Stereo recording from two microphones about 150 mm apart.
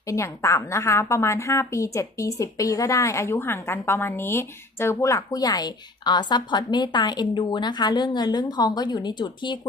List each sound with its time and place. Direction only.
0.1 s a woman's voice: 20° left (ahead or behind)